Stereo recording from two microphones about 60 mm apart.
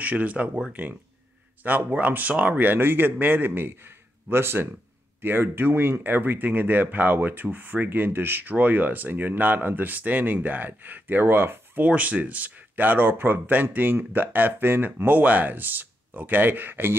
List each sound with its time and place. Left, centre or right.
0.0 s speech: right
1.6 s speech: right
11.8 s speech: right